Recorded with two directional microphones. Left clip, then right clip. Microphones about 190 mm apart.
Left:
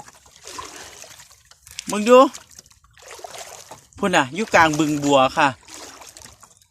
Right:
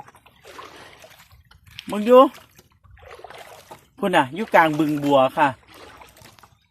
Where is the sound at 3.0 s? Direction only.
40° left (ahead or behind).